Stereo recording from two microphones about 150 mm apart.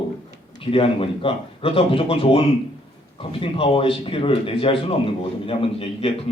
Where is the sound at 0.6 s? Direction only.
35° left (ahead or behind).